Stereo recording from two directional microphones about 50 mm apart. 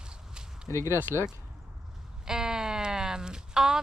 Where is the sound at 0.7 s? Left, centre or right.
Left.